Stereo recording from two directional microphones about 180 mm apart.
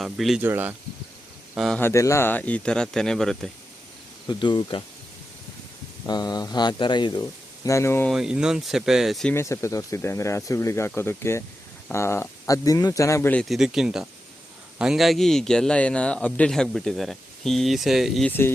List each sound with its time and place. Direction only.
0.0 s speech: centre (ahead or behind)
0.4 s speech: 10° right (ahead or behind)
1.5 s speech: centre (ahead or behind)
1.8 s speech: 15° left (ahead or behind)
4.3 s speech: 25° left (ahead or behind)
6.1 s speech: 20° left (ahead or behind)
8.1 s speech: 5° right (ahead or behind)
9.3 s speech: 15° left (ahead or behind)
13.4 s speech: centre (ahead or behind)
18.3 s speech: 10° left (ahead or behind)